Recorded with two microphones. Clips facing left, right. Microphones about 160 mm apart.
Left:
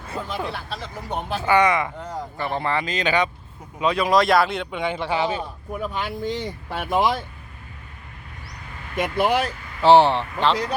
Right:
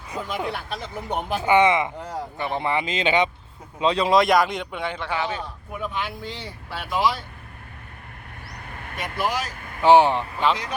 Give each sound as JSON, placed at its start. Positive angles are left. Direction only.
{"t": 0.1, "sound": "speech", "side_deg": -15}
{"t": 5.1, "sound": "a man's voice", "side_deg": 25}
{"t": 5.8, "sound": "speech", "side_deg": 40}
{"t": 8.5, "sound": "vehicle", "side_deg": -55}
{"t": 9.0, "sound": "speech", "side_deg": 55}
{"t": 9.6, "sound": "vehicle", "side_deg": -50}
{"t": 9.8, "sound": "speech", "side_deg": -10}